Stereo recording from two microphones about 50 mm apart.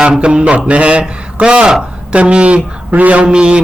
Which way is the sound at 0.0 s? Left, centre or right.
Centre.